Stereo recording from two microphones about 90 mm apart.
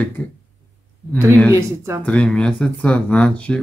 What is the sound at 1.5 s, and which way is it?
Speech, 30° right (ahead or behind).